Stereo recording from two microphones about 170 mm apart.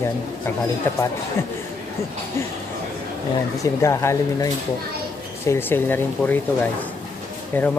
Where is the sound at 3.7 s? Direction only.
15° left (ahead or behind).